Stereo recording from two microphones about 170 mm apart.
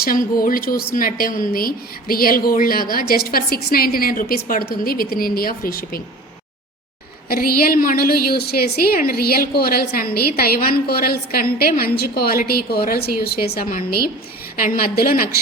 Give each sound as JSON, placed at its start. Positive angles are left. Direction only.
{"t": 0.0, "sound": "a woman's voice", "side_deg": 55}
{"t": 7.3, "sound": "a woman's voice", "side_deg": 60}